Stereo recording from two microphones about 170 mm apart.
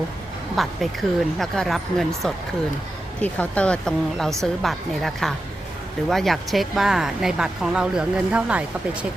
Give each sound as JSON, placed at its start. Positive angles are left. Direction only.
{"t": 0.5, "sound": "speech", "side_deg": 0}